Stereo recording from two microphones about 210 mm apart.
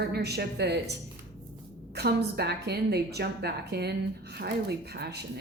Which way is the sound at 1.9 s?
50° right (ahead or behind).